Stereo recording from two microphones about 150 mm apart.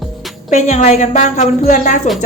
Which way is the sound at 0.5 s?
50° left (ahead or behind).